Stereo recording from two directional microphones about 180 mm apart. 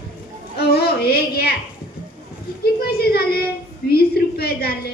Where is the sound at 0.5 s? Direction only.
60° left (ahead or behind).